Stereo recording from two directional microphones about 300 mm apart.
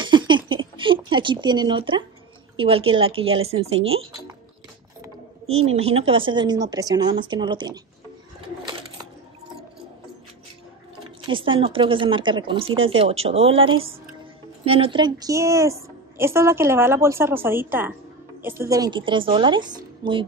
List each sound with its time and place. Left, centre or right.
0.0 s a sound: centre
2.5 s a woman's voice: centre
5.7 s a woman's voice: centre
11.2 s a woman's voice: centre